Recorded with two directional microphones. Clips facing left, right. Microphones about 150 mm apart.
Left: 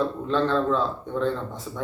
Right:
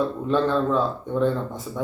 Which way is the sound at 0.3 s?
10° right (ahead or behind).